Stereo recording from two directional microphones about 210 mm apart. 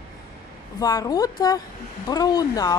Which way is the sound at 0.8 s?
15° left (ahead or behind).